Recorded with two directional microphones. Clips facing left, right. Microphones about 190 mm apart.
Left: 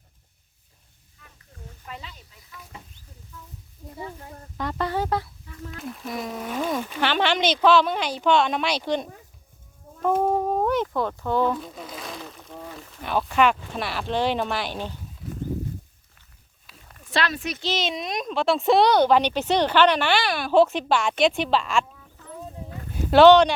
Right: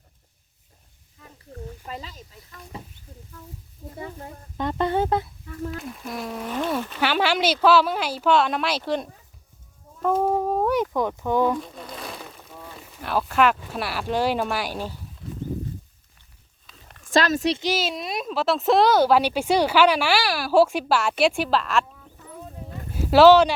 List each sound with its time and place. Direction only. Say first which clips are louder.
1.9 s speech: right 4 dB; 35° right (ahead or behind)
4.5 s speech: right 3 dB; 20° right (ahead or behind)
5.8 s speech: left 1 dB; centre (ahead or behind)
7.0 s speech: even; 5° right (ahead or behind)
10.2 s a sound: even; centre (ahead or behind)
11.7 s speech: even; 5° left (ahead or behind)
17.1 s speech: right 6 dB; 45° right (ahead or behind)
17.6 s speech: right 2 dB; 10° right (ahead or behind)
22.9 s horse: even; centre (ahead or behind)